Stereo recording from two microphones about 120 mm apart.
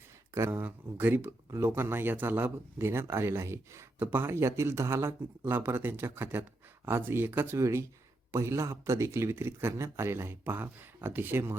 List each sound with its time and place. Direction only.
0.3 s speech: 25° right (ahead or behind)